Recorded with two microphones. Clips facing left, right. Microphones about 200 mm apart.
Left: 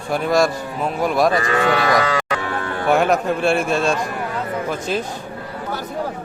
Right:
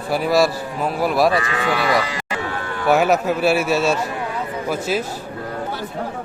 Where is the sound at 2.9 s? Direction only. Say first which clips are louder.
Right 1 dB; 5° right (ahead or behind).